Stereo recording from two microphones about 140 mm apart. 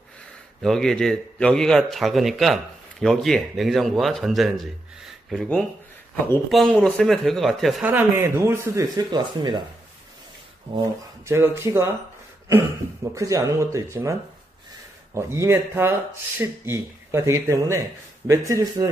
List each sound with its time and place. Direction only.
0.6 s a man's voice: 5° left (ahead or behind)
7.8 s speech: 15° right (ahead or behind)
11.2 s speech: 20° right (ahead or behind)
13.1 s speech: 25° right (ahead or behind)
15.1 s speech: 20° right (ahead or behind)